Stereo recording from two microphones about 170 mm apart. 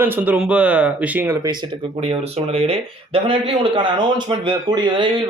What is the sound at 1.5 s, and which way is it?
Speech, 25° right (ahead or behind).